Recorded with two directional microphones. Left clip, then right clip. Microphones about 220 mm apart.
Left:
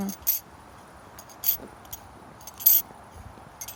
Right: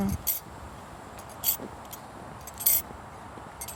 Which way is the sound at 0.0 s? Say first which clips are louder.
Right 1 dB; 15° left (ahead or behind).